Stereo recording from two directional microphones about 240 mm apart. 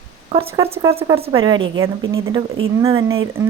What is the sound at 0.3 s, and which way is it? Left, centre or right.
Speech, right.